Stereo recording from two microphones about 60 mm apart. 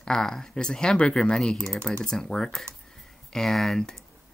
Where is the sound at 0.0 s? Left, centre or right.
Centre.